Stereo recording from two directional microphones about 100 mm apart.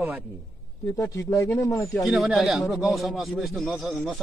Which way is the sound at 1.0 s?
30° left (ahead or behind).